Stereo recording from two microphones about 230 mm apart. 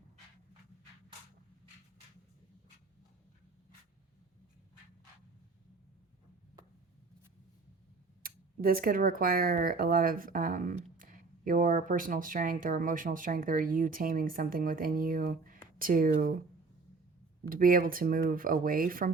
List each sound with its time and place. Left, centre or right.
8.2 s speech: right
17.5 s speech: right